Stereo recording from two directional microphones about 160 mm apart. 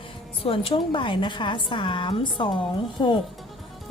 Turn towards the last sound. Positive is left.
turn(degrees=25)  # may be behind; listen again after turning